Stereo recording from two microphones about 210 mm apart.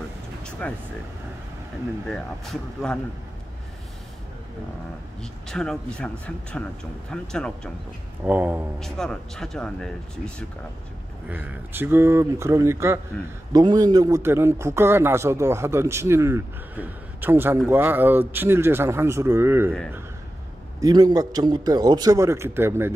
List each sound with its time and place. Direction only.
0.4 s air conditioning: 5° left (ahead or behind)
2.0 s speech: centre (ahead or behind)
5.2 s speech: centre (ahead or behind)
8.2 s speech: 10° right (ahead or behind)
8.7 s speech: centre (ahead or behind)
11.2 s speech: 10° right (ahead or behind)
20.8 s speech: 20° right (ahead or behind)